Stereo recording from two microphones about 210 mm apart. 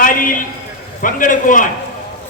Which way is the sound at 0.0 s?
40° left (ahead or behind).